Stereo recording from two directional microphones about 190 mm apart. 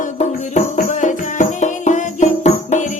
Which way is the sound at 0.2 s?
40° left (ahead or behind).